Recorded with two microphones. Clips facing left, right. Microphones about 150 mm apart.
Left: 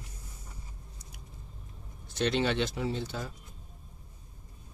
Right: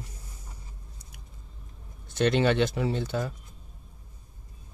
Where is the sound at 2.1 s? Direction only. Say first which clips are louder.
Right 5 dB; 55° right (ahead or behind).